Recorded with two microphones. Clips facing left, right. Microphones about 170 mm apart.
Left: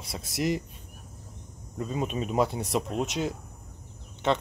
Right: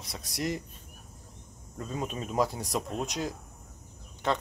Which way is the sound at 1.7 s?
15° left (ahead or behind).